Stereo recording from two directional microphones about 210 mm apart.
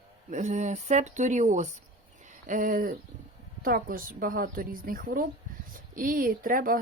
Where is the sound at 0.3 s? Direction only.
35° right (ahead or behind).